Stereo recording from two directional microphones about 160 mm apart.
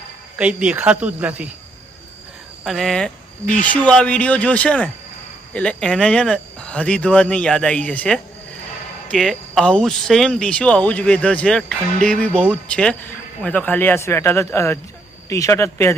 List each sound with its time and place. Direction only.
0.3 s speech: 5° right (ahead or behind)
2.6 s speech: centre (ahead or behind)